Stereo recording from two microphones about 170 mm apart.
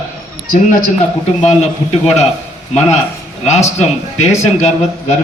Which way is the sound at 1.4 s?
40° left (ahead or behind).